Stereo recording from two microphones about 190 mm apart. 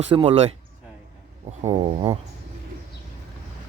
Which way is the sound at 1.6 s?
35° right (ahead or behind).